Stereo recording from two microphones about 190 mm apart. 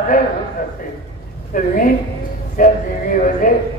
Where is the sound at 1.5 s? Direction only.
45° left (ahead or behind).